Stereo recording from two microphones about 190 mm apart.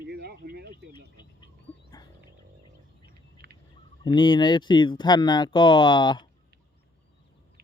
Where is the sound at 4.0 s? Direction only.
25° left (ahead or behind).